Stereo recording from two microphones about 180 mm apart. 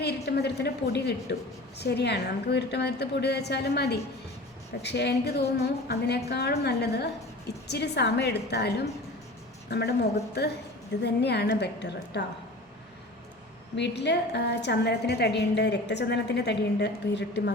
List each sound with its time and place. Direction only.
0.0 s a woman's voice: 65° left (ahead or behind)
13.7 s a woman's voice: 70° left (ahead or behind)